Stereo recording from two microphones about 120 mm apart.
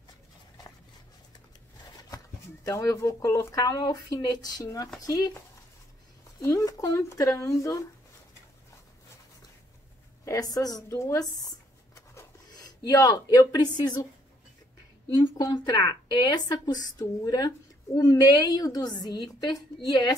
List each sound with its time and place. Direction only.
2.0 s speech: 30° left (ahead or behind)
6.4 s speech: 30° left (ahead or behind)
10.2 s speech: 30° left (ahead or behind)
15.0 s speech: 30° left (ahead or behind)